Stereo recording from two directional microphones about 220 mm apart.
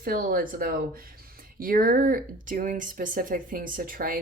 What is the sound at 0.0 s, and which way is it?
Speech, 40° right (ahead or behind).